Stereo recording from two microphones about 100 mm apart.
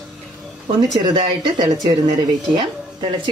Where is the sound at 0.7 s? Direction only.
45° right (ahead or behind).